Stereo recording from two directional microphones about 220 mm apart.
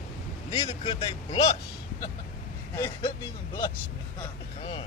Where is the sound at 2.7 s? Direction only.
15° left (ahead or behind).